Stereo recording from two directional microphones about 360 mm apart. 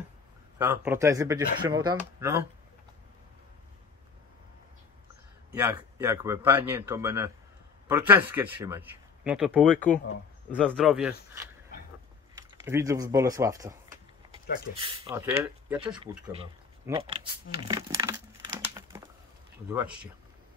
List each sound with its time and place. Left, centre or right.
0.6 s speech: centre
5.6 s speech: centre
9.8 s speech: left
10.5 s speech: centre
12.6 s speech: centre
14.8 s speech: centre
16.2 s a sound: centre
19.7 s speech: centre